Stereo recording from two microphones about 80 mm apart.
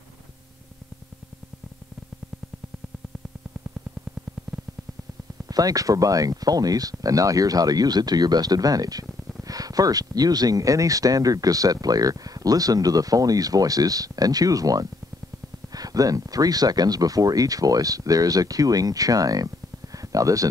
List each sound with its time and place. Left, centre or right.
5.5 s speech: right